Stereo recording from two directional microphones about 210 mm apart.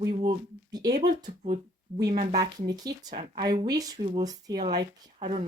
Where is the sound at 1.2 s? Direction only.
30° right (ahead or behind).